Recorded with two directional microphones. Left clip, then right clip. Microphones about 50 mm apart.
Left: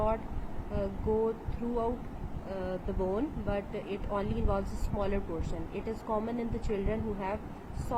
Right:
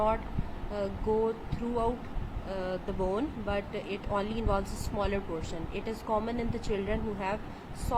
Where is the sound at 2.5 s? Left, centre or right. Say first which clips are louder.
Right 2 dB; centre.